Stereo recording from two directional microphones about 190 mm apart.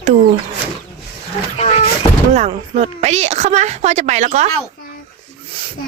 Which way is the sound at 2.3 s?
35° right (ahead or behind).